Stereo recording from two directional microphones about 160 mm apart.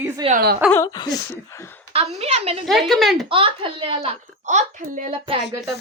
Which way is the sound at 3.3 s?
35° right (ahead or behind).